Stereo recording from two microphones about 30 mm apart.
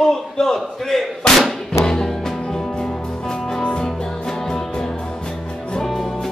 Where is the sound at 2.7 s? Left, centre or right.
Left.